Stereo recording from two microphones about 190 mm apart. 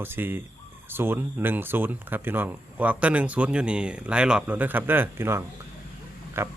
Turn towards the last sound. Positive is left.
turn(degrees=-10)  # may be behind; listen again after turning